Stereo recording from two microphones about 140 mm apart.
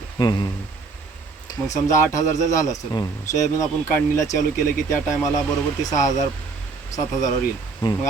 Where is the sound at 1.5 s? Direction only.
30° left (ahead or behind).